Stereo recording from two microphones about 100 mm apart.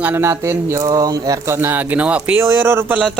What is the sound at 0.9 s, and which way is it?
Speech, 40° right (ahead or behind).